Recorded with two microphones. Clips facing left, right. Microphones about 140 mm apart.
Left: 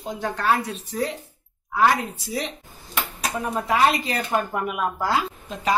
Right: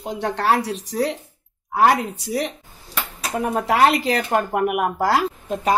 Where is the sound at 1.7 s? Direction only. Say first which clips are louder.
Right 3 dB; 65° right (ahead or behind); by 4.2 s 80° right.